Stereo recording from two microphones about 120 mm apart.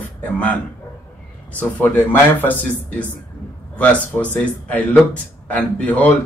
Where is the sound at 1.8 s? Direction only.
15° left (ahead or behind).